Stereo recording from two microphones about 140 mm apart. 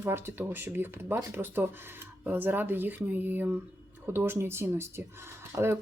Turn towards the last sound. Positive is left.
turn(degrees=-20)  # may be behind; listen again after turning